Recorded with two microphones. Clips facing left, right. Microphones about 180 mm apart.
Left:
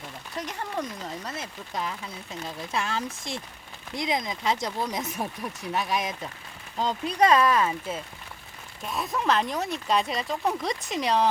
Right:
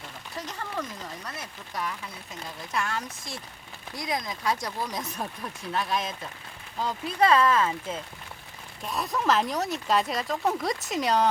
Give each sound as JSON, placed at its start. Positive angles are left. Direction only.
{"t": 1.4, "sound": "speech", "side_deg": 25}
{"t": 8.9, "sound": "speech", "side_deg": 0}